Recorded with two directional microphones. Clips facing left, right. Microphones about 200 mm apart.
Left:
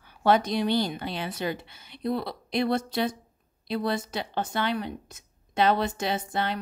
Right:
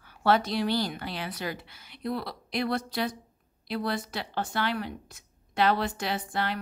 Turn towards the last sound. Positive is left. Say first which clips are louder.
# left 2 dB
turn(degrees=20)  # may be behind; listen again after turning